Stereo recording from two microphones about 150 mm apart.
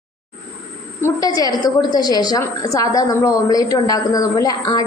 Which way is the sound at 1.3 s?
25° left (ahead or behind).